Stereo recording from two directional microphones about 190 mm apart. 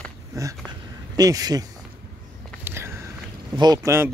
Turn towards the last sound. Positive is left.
turn(degrees=-15)  # may be behind; listen again after turning